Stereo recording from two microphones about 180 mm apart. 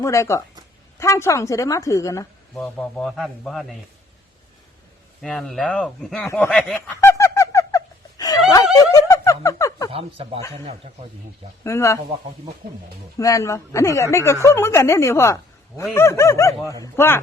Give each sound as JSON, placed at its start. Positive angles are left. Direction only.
{"t": 0.0, "sound": "a woman's voice", "side_deg": 15}
{"t": 2.6, "sound": "speech", "side_deg": 5}
{"t": 5.2, "sound": "speech", "side_deg": 0}
{"t": 7.0, "sound": "owl", "side_deg": 15}
{"t": 8.9, "sound": "music", "side_deg": 20}
{"t": 9.9, "sound": "speech", "side_deg": -30}
{"t": 11.6, "sound": "a woman's voice", "side_deg": 15}
{"t": 13.1, "sound": "a woman's voice", "side_deg": 15}